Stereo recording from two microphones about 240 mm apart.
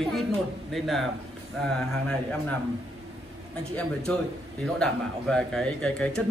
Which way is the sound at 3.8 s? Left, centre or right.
Centre.